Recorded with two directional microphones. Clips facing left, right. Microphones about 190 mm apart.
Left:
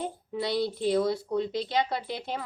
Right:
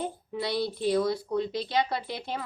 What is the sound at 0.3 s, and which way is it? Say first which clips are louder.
Speech: left 2 dB; 20° left (ahead or behind).